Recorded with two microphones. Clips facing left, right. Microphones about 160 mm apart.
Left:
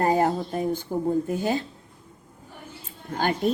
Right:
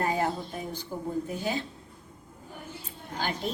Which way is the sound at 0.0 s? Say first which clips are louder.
Left 7 dB; 45° left (ahead or behind).